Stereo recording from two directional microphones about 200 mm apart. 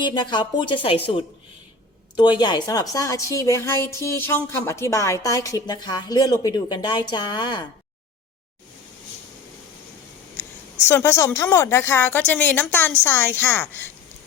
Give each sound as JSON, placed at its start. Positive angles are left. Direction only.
{"t": 0.0, "sound": "speech", "side_deg": 20}
{"t": 2.1, "sound": "speech", "side_deg": 20}
{"t": 10.8, "sound": "speech", "side_deg": 15}